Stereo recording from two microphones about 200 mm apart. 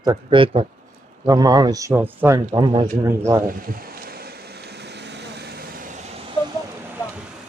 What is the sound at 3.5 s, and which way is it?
Vehicle, 45° right (ahead or behind).